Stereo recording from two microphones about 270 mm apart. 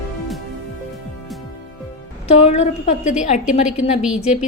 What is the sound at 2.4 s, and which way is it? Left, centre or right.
A woman's voice, left.